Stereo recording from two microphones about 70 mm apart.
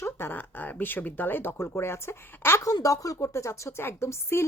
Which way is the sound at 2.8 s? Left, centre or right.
Left.